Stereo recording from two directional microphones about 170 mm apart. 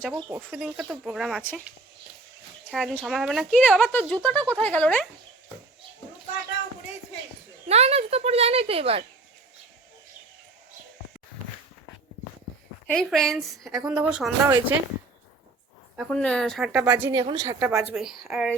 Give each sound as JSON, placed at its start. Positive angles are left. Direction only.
{"t": 0.3, "sound": "speech", "side_deg": -5}
{"t": 2.6, "sound": "speech", "side_deg": 5}
{"t": 7.7, "sound": "a child's voice", "side_deg": -40}
{"t": 12.9, "sound": "speech", "side_deg": 5}
{"t": 16.0, "sound": "speech", "side_deg": 5}
{"t": 17.1, "sound": "speech", "side_deg": -25}
{"t": 17.9, "sound": "speech", "side_deg": 0}